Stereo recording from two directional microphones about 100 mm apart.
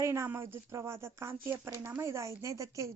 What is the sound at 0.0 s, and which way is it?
Speech, 30° right (ahead or behind).